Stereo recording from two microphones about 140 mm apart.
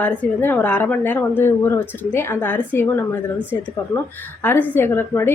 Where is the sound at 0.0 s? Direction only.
10° left (ahead or behind).